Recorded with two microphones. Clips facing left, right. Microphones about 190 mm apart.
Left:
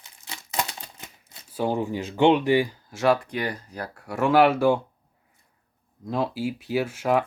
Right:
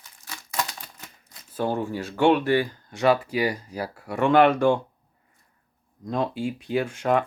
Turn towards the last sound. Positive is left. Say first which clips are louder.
# even
turn(degrees=5)  # may be behind; listen again after turning